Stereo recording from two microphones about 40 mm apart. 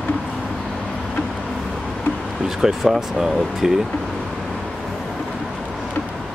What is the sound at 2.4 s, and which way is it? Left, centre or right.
Speech, centre.